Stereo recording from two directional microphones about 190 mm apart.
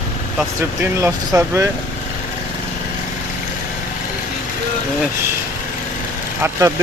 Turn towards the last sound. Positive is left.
turn(degrees=-15)  # may be behind; listen again after turning